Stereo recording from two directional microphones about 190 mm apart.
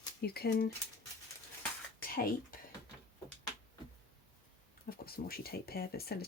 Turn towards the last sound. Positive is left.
turn(degrees=55)  # may be behind; listen again after turning